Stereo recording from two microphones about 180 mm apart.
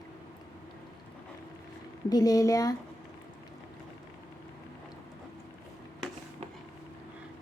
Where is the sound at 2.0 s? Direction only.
20° left (ahead or behind).